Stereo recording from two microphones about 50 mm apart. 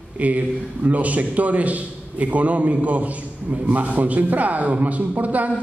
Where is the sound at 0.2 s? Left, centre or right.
Right.